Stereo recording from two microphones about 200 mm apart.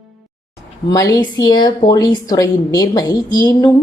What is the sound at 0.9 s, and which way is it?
Speech, 15° left (ahead or behind).